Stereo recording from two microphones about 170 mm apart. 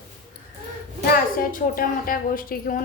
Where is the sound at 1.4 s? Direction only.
55° left (ahead or behind).